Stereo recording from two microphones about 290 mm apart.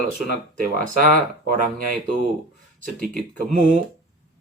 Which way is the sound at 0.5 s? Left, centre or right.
Right.